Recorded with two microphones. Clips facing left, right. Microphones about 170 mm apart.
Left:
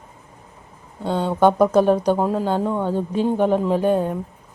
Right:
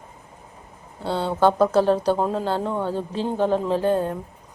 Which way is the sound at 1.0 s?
15° left (ahead or behind).